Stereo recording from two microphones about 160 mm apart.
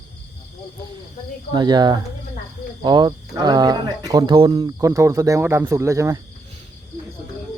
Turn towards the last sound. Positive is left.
turn(degrees=-20)  # may be behind; listen again after turning